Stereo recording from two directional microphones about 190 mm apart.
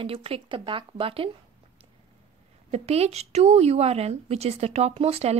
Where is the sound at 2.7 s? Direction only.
35° right (ahead or behind).